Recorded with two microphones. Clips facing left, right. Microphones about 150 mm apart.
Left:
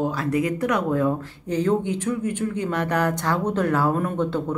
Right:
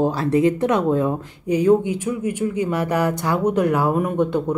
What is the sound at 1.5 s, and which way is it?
Speech, 10° right (ahead or behind).